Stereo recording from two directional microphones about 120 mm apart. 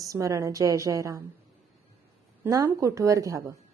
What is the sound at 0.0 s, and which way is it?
A woman's voice, 30° right (ahead or behind).